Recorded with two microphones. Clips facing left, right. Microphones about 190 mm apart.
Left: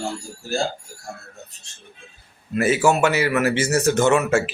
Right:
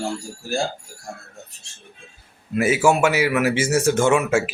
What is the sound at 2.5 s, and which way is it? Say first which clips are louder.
A man's voice: even; 10° right (ahead or behind).